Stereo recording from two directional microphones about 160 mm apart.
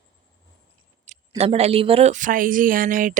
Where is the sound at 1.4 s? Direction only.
40° right (ahead or behind); by 3.2 s 60° right (ahead or behind).